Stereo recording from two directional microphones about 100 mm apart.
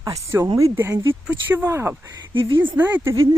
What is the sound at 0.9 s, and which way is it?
Speech, 15° right (ahead or behind).